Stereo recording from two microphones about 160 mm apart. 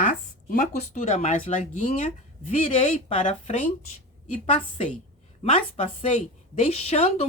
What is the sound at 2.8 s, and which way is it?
Speech, 40° left (ahead or behind).